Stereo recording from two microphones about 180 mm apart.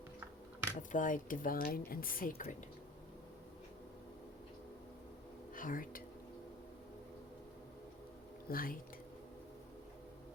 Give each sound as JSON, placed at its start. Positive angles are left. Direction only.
{"t": 0.8, "sound": "speech", "side_deg": 45}
{"t": 5.5, "sound": "a woman's voice", "side_deg": 50}
{"t": 8.4, "sound": "speech", "side_deg": 50}